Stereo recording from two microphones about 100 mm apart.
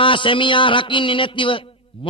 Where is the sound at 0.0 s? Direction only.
60° left (ahead or behind).